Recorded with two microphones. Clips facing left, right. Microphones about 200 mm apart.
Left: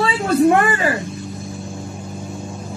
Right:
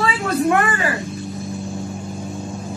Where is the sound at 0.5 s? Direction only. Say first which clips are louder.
Left 1 dB; 30° left (ahead or behind).